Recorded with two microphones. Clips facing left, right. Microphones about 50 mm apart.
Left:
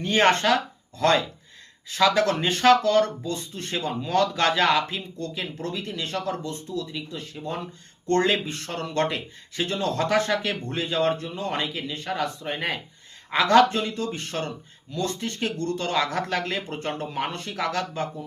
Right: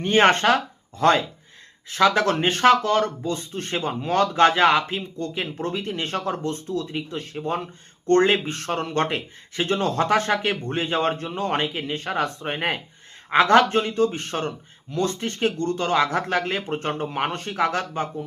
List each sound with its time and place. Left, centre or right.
0.0 s speech: right